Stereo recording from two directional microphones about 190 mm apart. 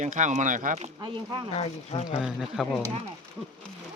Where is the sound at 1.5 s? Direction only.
30° left (ahead or behind).